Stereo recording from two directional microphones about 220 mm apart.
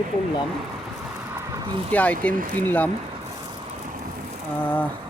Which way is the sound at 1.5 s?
20° right (ahead or behind).